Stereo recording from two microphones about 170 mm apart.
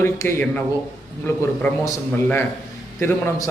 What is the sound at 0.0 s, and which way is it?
A man's voice, 15° left (ahead or behind).